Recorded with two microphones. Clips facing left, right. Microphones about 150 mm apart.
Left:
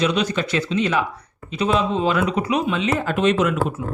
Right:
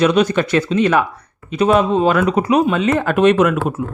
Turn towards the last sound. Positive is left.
turn(degrees=-55)  # may be behind; listen again after turning